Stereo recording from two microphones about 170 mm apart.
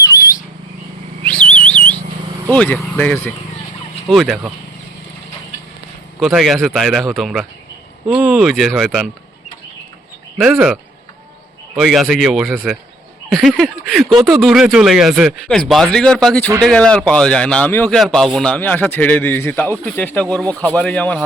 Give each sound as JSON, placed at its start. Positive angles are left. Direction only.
{"t": 0.0, "sound": "a sound", "side_deg": 20}
{"t": 1.2, "sound": "a sound", "side_deg": 5}
{"t": 2.5, "sound": "a man's voice", "side_deg": 5}
{"t": 6.1, "sound": "speech", "side_deg": 0}
{"t": 10.4, "sound": "speech", "side_deg": -5}
{"t": 11.8, "sound": "a man's voice", "side_deg": 0}